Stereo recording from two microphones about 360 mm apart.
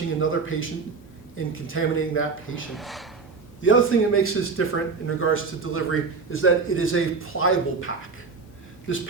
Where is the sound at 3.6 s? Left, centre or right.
Left.